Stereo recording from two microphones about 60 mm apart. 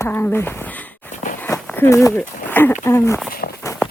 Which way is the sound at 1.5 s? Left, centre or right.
Left.